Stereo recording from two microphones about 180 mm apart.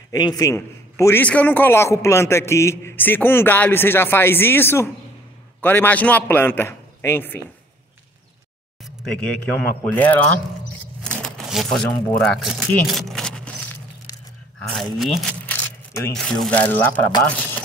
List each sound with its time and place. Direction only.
0.1 s a man's voice: 20° left (ahead or behind)
8.8 s a man's voice: 5° left (ahead or behind)
11.1 s a sound: 5° left (ahead or behind)
14.6 s speech: centre (ahead or behind)
15.4 s speech: 10° left (ahead or behind)